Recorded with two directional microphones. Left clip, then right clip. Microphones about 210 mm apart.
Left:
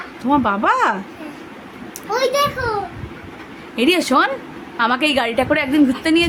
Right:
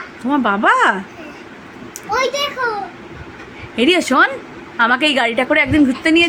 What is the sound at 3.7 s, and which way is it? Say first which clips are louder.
Speech: right 2 dB; centre (ahead or behind).